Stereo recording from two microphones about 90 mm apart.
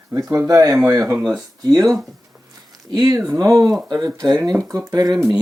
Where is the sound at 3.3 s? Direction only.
35° right (ahead or behind).